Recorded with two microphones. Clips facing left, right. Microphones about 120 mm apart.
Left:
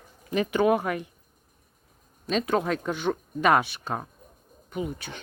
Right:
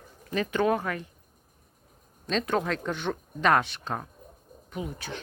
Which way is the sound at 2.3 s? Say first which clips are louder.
Left 2 dB; 5° left (ahead or behind).